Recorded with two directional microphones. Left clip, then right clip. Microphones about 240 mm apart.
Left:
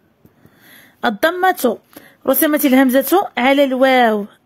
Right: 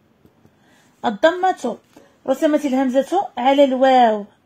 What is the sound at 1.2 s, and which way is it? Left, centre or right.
Speech, left.